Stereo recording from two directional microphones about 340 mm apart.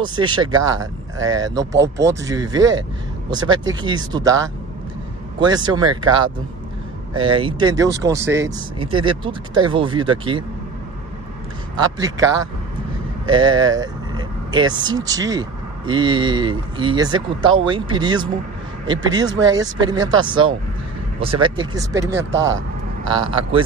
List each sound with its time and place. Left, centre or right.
0.0 s speech: centre
5.4 s speech: centre
11.8 s speech: centre